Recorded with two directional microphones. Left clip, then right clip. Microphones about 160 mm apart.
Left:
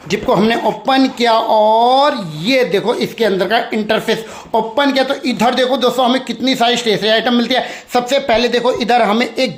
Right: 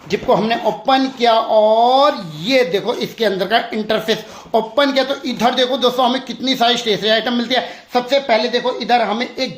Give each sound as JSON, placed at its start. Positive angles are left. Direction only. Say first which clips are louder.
{"t": 0.1, "sound": "speech", "louder": "left 2 dB", "side_deg": 30}